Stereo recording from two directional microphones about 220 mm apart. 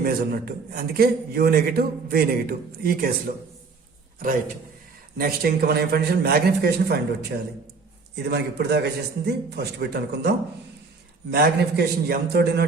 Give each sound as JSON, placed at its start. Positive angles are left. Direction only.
{"t": 0.0, "sound": "a man's voice", "side_deg": -45}
{"t": 5.1, "sound": "a man's voice", "side_deg": -45}